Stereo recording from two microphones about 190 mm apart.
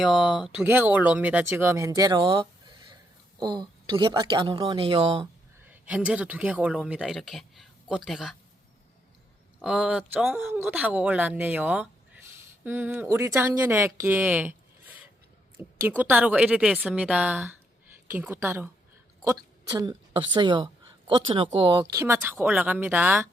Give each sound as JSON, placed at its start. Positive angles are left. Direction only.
{"t": 0.0, "sound": "speech", "side_deg": 0}
{"t": 5.6, "sound": "speech", "side_deg": -10}
{"t": 9.6, "sound": "a woman's voice", "side_deg": -5}